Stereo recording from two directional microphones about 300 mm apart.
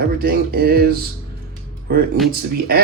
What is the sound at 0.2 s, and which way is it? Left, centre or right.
Speech, right.